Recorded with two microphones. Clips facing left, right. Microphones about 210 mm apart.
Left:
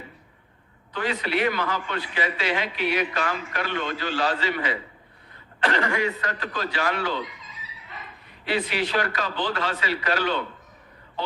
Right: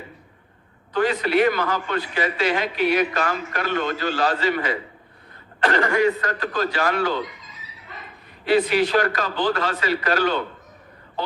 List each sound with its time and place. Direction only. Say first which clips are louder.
0.9 s a man's voice: right 7 dB; 45° right (ahead or behind)
8.4 s a man's voice: right 8 dB; 45° right (ahead or behind)